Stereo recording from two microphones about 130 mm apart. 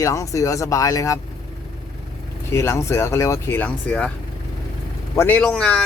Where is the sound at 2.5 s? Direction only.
20° left (ahead or behind).